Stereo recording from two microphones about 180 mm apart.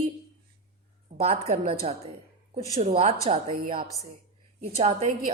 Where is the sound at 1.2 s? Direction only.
35° right (ahead or behind).